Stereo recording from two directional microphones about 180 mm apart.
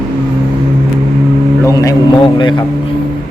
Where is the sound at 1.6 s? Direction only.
20° left (ahead or behind).